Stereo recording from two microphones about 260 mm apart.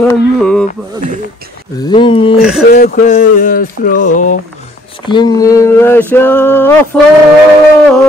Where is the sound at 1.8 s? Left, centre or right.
Centre.